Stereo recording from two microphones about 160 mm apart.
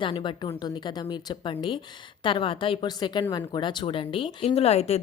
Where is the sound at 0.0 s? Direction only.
30° left (ahead or behind).